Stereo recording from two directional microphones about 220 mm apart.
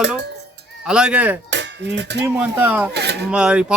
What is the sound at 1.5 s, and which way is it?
Dishes, 55° right (ahead or behind).